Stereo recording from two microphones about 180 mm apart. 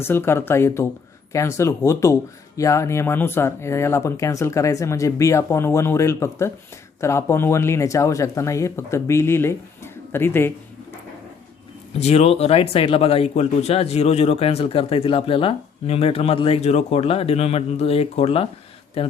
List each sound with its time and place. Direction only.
0.0 s speech: 15° left (ahead or behind)
11.9 s speech: 35° left (ahead or behind)